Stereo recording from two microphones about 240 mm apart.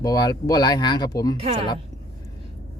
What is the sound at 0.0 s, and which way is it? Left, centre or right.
Speech, centre.